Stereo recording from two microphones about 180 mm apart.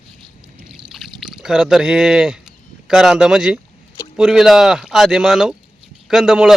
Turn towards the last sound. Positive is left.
turn(degrees=-5)  # may be behind; listen again after turning